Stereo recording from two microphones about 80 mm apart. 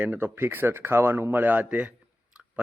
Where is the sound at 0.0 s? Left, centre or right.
Right.